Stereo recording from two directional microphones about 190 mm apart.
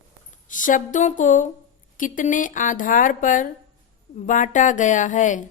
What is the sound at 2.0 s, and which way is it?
A woman's voice, 45° left (ahead or behind).